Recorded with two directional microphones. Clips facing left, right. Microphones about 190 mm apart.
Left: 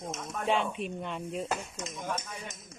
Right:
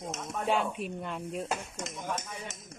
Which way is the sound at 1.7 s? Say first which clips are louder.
Even; 75° right (ahead or behind).